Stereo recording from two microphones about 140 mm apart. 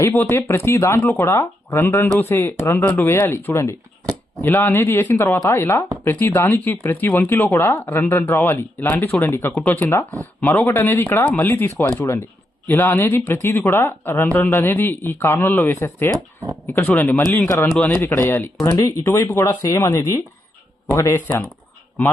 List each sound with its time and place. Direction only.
0.0 s speech: 15° left (ahead or behind)
9.5 s speech: 5° left (ahead or behind)